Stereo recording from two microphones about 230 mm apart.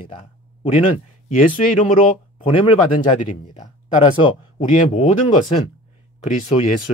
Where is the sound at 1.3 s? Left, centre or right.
Left.